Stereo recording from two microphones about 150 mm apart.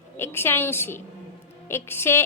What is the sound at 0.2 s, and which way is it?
A woman's voice, 15° left (ahead or behind).